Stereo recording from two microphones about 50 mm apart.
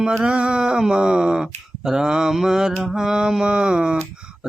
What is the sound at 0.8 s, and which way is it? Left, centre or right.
Mantra, centre.